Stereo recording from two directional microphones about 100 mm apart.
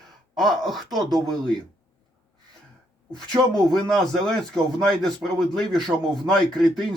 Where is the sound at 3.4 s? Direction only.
45° right (ahead or behind).